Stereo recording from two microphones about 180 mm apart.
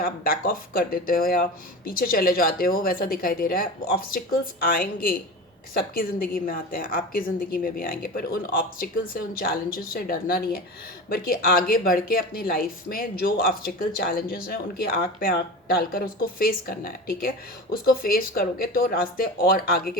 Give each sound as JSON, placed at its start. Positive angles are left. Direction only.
{"t": 0.0, "sound": "speech", "side_deg": 55}